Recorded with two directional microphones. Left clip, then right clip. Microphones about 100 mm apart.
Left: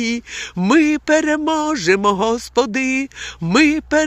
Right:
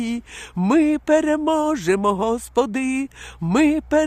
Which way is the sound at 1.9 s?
15° right (ahead or behind).